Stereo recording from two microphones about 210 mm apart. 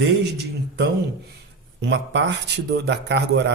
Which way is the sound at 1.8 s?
60° right (ahead or behind).